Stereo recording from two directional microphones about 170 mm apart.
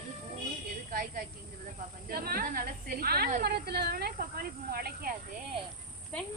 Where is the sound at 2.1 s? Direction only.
60° right (ahead or behind).